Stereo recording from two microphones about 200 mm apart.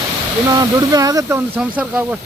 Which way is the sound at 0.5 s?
20° right (ahead or behind).